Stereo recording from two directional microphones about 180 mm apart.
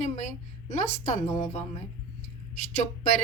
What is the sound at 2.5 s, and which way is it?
Speech, 45° left (ahead or behind).